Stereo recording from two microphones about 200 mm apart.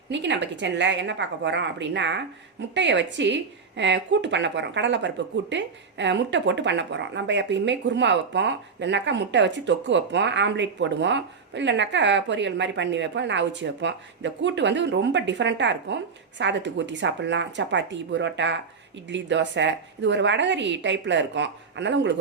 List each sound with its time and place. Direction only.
0.1 s a woman's voice: 65° right (ahead or behind)